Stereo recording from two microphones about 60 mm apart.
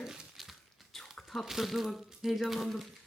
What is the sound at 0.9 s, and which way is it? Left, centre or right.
Speech, centre.